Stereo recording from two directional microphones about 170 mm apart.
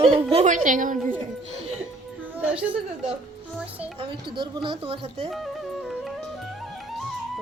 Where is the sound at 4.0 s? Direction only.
30° right (ahead or behind).